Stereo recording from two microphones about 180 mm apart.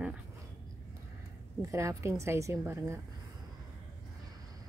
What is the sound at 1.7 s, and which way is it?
A woman's voice, 15° right (ahead or behind).